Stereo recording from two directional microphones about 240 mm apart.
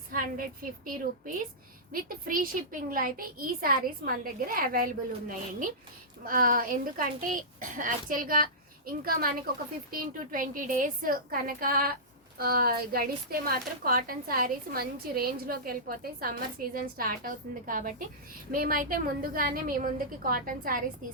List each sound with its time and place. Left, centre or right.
0.1 s a woman's voice: right